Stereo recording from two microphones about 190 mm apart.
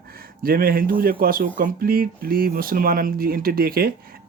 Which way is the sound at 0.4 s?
50° right (ahead or behind).